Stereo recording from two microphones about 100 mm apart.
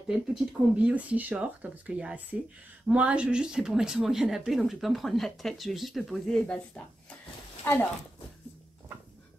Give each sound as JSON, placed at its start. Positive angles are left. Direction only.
{"t": 0.1, "sound": "speech", "side_deg": -5}
{"t": 0.8, "sound": "speech", "side_deg": -15}